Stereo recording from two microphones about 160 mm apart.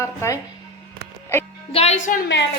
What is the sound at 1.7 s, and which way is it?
Speech, 40° left (ahead or behind).